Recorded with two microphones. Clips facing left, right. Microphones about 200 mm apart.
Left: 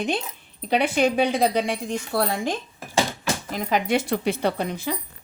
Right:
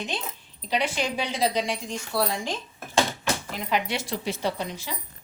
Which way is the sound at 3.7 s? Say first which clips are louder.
Left 6 dB; 50° left (ahead or behind).